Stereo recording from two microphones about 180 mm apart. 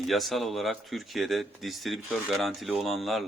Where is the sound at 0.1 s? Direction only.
Centre (ahead or behind).